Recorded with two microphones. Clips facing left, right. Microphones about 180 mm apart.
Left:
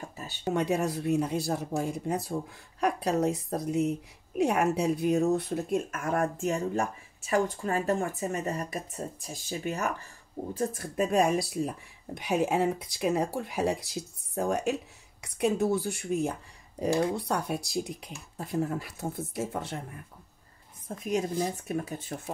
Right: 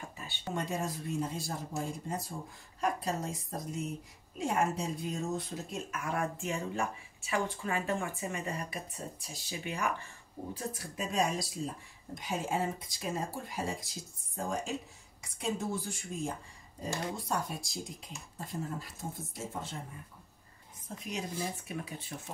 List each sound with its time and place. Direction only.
0.2 s a sound: 40° left (ahead or behind)
0.6 s speech: 70° left (ahead or behind)
21.0 s speech: 45° left (ahead or behind)